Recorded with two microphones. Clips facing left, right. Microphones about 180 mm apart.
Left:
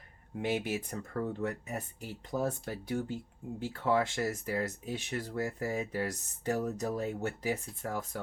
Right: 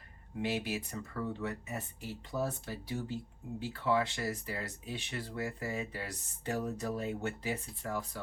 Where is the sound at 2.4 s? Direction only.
50° left (ahead or behind).